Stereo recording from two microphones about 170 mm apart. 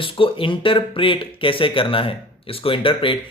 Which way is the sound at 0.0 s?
30° left (ahead or behind).